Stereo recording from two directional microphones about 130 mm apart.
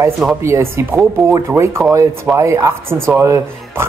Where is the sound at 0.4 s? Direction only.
20° right (ahead or behind).